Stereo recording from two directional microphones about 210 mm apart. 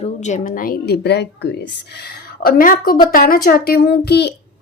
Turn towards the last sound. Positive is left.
turn(degrees=50)  # may be behind; listen again after turning